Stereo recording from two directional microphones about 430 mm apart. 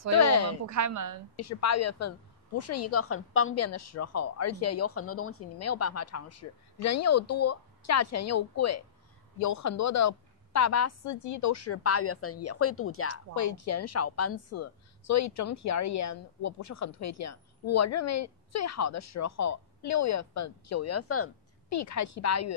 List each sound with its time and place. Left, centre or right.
0.1 s a sound: left
0.7 s a woman's voice: right
1.3 s a woman's voice: left